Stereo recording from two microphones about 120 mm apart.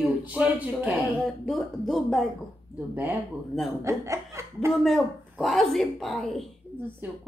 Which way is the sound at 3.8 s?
25° right (ahead or behind).